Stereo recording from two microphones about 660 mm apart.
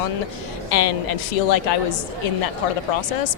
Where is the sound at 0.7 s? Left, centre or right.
Left.